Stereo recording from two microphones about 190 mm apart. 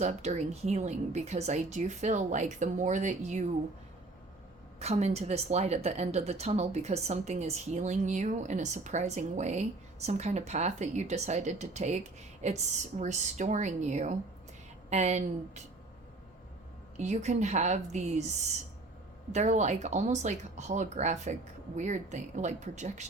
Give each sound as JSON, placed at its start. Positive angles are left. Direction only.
{"t": 0.0, "sound": "speech", "side_deg": -35}
{"t": 4.8, "sound": "speech", "side_deg": -35}
{"t": 17.0, "sound": "speech", "side_deg": -40}
{"t": 19.3, "sound": "speech", "side_deg": -40}